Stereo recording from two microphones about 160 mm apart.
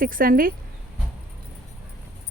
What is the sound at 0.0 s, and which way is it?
Speech, 60° right (ahead or behind).